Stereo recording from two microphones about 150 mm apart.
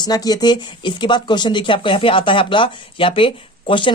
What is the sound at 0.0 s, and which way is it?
Speech, 25° left (ahead or behind).